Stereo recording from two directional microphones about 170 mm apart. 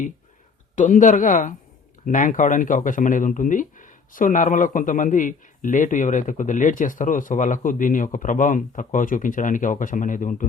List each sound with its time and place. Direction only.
0.8 s speech: 45° left (ahead or behind)